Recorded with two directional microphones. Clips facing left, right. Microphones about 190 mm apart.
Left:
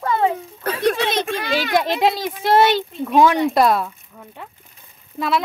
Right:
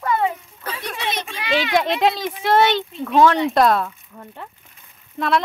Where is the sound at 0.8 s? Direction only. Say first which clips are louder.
Left 9 dB; 90° left.